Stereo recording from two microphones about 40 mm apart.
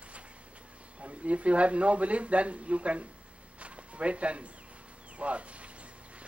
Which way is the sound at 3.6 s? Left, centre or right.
Right.